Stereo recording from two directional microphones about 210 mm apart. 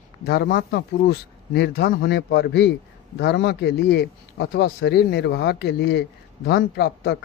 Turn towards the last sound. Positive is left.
turn(degrees=50)  # may be behind; listen again after turning